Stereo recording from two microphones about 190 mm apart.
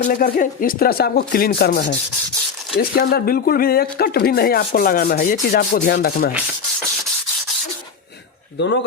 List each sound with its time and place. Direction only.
0.0 s speech: 45° left (ahead or behind)
8.5 s speech: 65° left (ahead or behind)